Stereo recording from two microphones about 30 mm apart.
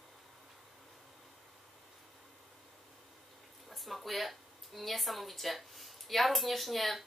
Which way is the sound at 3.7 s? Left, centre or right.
Centre.